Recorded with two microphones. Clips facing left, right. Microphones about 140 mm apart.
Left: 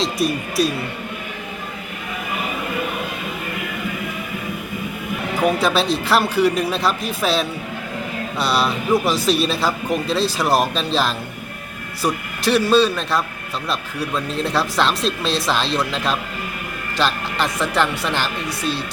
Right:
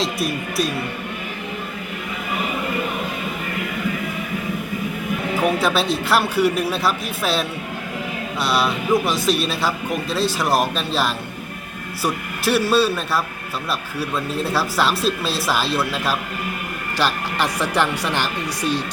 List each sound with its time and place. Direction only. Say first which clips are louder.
0.0 s speech: left 2 dB; centre (ahead or behind)
5.4 s speech: left 2 dB; centre (ahead or behind)
14.4 s speech: left 1 dB; 5° right (ahead or behind)